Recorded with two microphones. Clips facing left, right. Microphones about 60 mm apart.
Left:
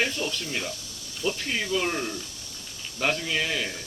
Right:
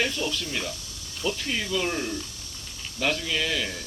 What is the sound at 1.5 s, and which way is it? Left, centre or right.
Speech, centre.